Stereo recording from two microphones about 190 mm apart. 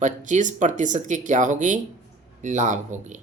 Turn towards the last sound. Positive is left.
turn(degrees=-40)  # may be behind; listen again after turning